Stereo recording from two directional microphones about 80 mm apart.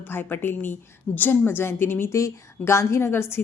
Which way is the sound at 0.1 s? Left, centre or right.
Left.